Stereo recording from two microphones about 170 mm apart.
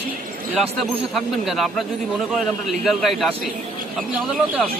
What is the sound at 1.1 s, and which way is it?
Speech, centre (ahead or behind).